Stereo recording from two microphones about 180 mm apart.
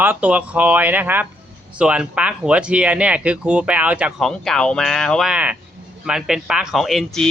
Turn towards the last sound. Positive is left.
turn(degrees=0)  # may be behind; listen again after turning